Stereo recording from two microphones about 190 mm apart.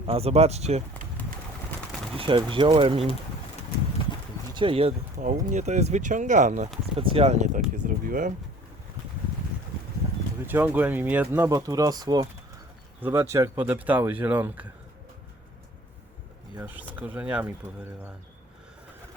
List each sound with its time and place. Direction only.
0.1 s speech: 30° right (ahead or behind)
2.1 s speech: 25° right (ahead or behind)
4.5 s speech: 30° right (ahead or behind)
6.9 s speech: 30° right (ahead or behind); by 8.3 s 45° right (ahead or behind)
10.4 s speech: 10° right (ahead or behind)
16.6 s speech: 10° right (ahead or behind)